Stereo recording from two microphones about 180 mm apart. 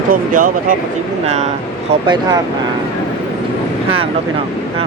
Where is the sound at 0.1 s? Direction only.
50° right (ahead or behind).